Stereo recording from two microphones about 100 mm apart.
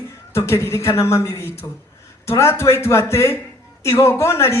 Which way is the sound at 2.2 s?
25° left (ahead or behind).